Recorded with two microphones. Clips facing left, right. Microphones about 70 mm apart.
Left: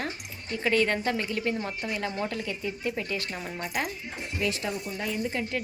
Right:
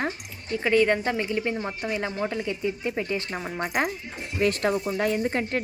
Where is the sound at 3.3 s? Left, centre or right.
Right.